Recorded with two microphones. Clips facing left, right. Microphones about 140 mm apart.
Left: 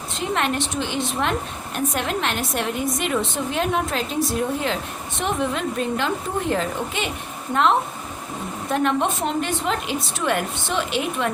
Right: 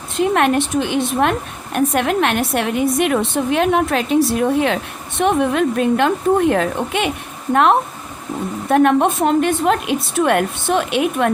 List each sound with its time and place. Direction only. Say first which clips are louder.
0.2 s a woman's voice: right 8 dB; 55° right (ahead or behind)